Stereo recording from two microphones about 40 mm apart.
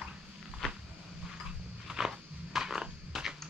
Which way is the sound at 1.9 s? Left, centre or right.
Centre.